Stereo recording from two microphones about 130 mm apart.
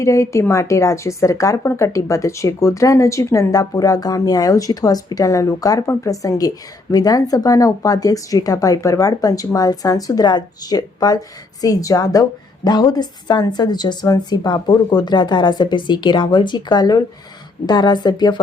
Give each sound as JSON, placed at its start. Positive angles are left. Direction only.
{"t": 0.0, "sound": "a woman's voice", "side_deg": 25}